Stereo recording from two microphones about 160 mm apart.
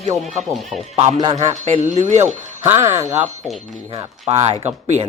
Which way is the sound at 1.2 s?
35° right (ahead or behind).